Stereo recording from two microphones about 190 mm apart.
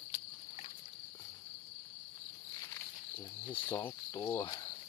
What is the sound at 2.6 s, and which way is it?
Cricket, 10° left (ahead or behind).